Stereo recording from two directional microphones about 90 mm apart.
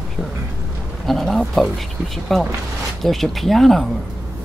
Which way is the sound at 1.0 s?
Centre (ahead or behind).